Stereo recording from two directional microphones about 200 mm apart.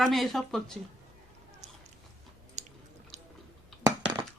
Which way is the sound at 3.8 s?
20° right (ahead or behind).